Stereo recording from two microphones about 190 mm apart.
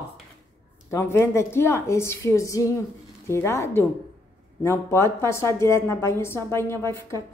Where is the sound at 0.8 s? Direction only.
15° left (ahead or behind).